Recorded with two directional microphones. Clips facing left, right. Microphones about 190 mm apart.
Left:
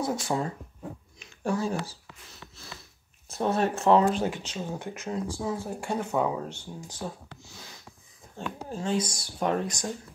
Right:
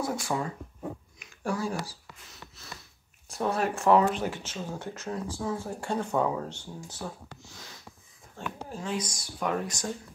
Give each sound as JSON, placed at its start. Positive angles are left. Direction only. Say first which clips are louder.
{"t": 0.0, "sound": "speech", "louder": "left 2 dB", "side_deg": 20}
{"t": 3.3, "sound": "speech", "louder": "left 2 dB", "side_deg": 25}
{"t": 4.3, "sound": "speech", "louder": "left 2 dB", "side_deg": 15}
{"t": 8.4, "sound": "speech", "louder": "left 3 dB", "side_deg": 20}